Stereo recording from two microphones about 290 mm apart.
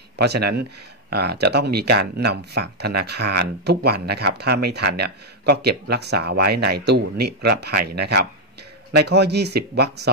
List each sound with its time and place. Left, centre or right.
0.2 s speech: right